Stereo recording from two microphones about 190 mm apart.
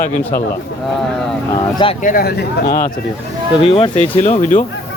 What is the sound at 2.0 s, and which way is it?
Speech, 55° left (ahead or behind).